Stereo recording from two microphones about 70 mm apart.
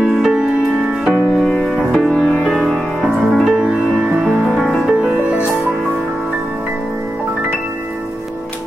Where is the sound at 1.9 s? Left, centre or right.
Centre.